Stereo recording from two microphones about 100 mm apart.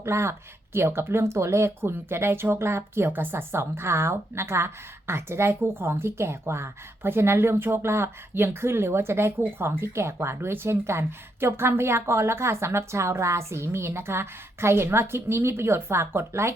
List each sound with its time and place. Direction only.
0.0 s speech: 25° right (ahead or behind)